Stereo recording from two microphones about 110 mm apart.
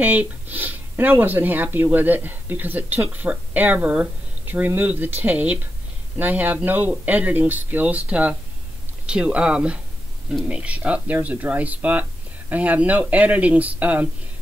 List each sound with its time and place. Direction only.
0.0 s speech: 15° right (ahead or behind)